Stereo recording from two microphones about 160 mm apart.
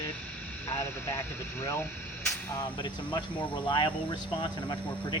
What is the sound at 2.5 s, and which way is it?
Speech, 30° left (ahead or behind).